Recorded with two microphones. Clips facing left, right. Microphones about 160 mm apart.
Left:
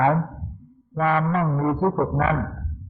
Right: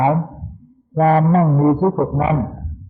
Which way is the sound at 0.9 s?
40° right (ahead or behind).